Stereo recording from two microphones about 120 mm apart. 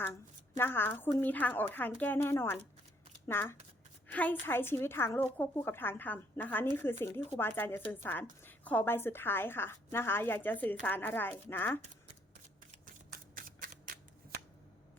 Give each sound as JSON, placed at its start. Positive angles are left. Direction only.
{"t": 0.0, "sound": "a woman's voice", "side_deg": 20}